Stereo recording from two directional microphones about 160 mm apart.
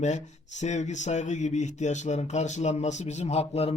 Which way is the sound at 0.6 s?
45° left (ahead or behind).